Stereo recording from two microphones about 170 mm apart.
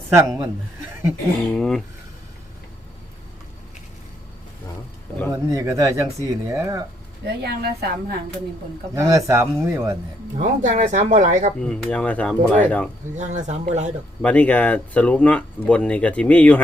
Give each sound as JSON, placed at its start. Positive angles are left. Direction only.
{"t": 0.1, "sound": "speech", "side_deg": -20}
{"t": 1.5, "sound": "speech", "side_deg": 0}
{"t": 5.3, "sound": "speech", "side_deg": -20}
{"t": 7.3, "sound": "speech", "side_deg": -70}
{"t": 9.0, "sound": "speech", "side_deg": -20}
{"t": 10.3, "sound": "speech", "side_deg": -45}
{"t": 11.6, "sound": "speech", "side_deg": 5}
{"t": 13.1, "sound": "speech", "side_deg": -45}
{"t": 14.2, "sound": "speech", "side_deg": 10}